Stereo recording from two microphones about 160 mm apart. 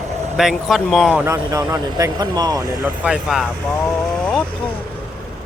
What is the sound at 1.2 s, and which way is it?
Speech, 20° right (ahead or behind).